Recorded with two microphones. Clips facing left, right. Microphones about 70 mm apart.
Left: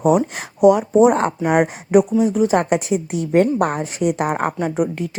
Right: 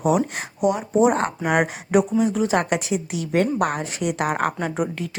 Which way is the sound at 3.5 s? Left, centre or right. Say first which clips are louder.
Left 3 dB; left.